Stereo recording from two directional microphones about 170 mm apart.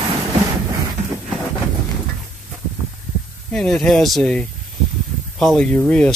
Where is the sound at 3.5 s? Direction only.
5° left (ahead or behind).